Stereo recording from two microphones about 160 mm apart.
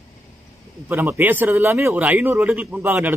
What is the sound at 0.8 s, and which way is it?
A man's voice, 15° right (ahead or behind).